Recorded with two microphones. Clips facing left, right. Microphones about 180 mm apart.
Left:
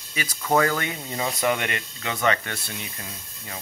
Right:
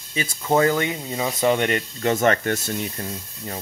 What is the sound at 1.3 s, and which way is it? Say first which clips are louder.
Speech: right 7 dB; 30° right (ahead or behind).